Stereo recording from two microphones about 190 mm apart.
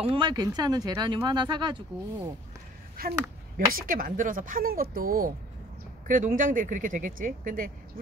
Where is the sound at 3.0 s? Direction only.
50° right (ahead or behind).